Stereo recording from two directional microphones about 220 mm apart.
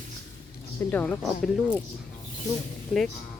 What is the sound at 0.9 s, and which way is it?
Speech, 5° left (ahead or behind).